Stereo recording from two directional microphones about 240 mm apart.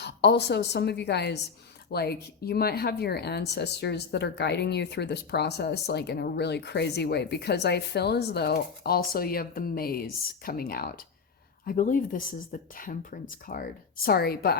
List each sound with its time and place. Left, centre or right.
0.0 s speech: left